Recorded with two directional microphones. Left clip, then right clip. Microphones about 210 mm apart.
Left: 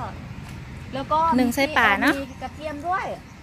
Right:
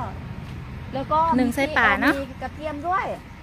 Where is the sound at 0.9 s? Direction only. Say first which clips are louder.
Right 1 dB; 45° left (ahead or behind).